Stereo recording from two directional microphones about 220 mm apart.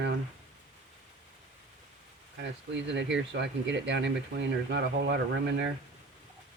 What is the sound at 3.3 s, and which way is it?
Speech, 50° right (ahead or behind).